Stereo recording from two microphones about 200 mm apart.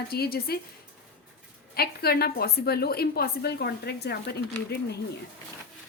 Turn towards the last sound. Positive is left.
turn(degrees=55)  # may be behind; listen again after turning